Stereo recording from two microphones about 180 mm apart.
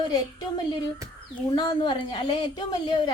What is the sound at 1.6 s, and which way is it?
Speech, 25° left (ahead or behind).